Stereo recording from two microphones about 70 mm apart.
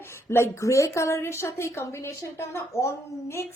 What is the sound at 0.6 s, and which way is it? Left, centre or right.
A woman's voice, left.